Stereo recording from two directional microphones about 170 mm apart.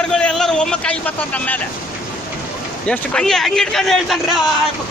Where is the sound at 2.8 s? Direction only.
5° left (ahead or behind).